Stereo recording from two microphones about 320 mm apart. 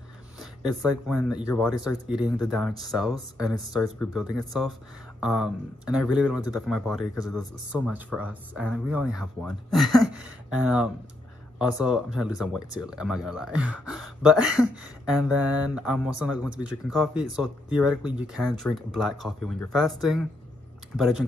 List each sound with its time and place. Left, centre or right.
0.4 s speech: centre